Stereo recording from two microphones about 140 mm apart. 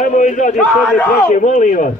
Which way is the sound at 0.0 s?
60° left (ahead or behind).